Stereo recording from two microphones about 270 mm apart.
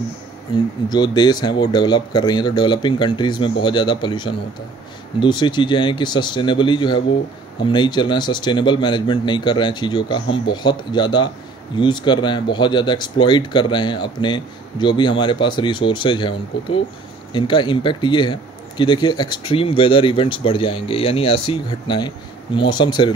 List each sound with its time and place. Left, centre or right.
0.8 s speech: centre